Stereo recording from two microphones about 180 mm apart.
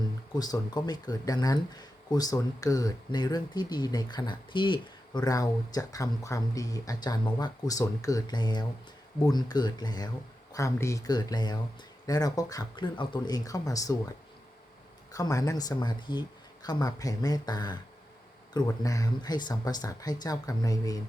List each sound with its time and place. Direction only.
0.3 s speech: 20° left (ahead or behind)
15.1 s speech: 20° left (ahead or behind)